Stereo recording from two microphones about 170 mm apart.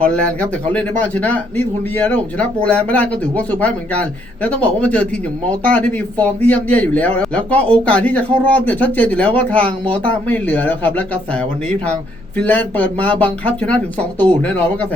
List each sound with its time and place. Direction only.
0.0 s speech: 5° left (ahead or behind)
14.0 s speech: 25° right (ahead or behind)
14.4 s speech: 10° left (ahead or behind)